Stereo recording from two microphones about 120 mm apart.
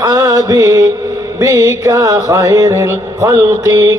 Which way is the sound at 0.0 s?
30° right (ahead or behind).